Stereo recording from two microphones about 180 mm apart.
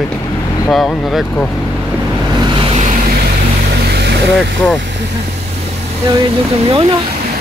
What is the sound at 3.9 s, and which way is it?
Vehicle, 65° right (ahead or behind).